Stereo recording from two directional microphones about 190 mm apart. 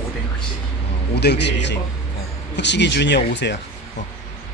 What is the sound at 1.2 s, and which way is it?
Speech, 65° left (ahead or behind).